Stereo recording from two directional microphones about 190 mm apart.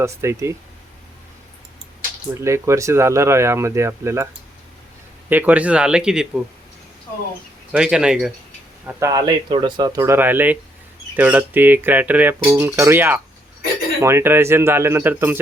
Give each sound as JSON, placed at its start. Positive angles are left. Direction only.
{"t": 0.0, "sound": "speech", "side_deg": -15}
{"t": 2.3, "sound": "speech", "side_deg": -15}
{"t": 5.3, "sound": "speech", "side_deg": -10}
{"t": 7.7, "sound": "speech", "side_deg": -5}
{"t": 8.9, "sound": "speech", "side_deg": -15}